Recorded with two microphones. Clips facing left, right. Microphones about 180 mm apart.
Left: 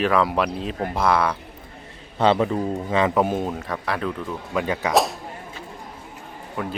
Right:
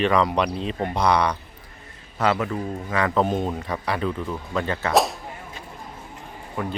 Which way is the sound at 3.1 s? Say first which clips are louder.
Left 1 dB; 10° left (ahead or behind).